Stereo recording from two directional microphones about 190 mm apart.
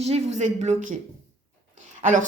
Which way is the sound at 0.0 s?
35° right (ahead or behind).